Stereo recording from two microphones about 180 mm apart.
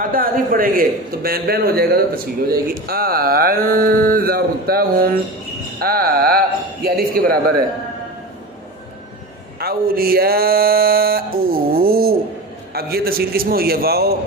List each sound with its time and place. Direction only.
0.0 s speech: 50° right (ahead or behind)
9.6 s speech: 55° right (ahead or behind)